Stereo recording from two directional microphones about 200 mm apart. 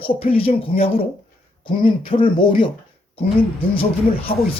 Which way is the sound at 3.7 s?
25° left (ahead or behind).